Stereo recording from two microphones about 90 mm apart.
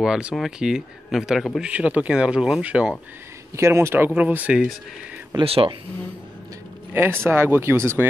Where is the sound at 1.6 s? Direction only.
15° right (ahead or behind).